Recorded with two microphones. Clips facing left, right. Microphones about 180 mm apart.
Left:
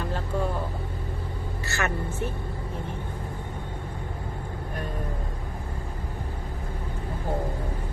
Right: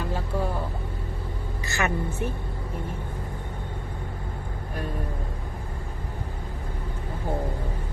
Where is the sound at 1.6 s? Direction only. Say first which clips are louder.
Right 2 dB; 15° right (ahead or behind).